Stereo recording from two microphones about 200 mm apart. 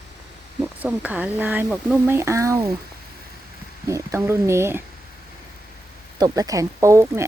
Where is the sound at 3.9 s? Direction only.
15° right (ahead or behind).